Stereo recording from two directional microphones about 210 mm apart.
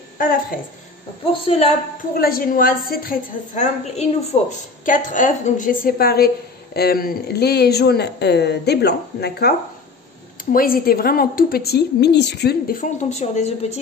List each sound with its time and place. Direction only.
0.2 s a woman's voice: 40° left (ahead or behind)
1.2 s a woman's voice: 25° left (ahead or behind)
2.1 s a woman's voice: 45° left (ahead or behind)
10.5 s a woman's voice: 45° left (ahead or behind)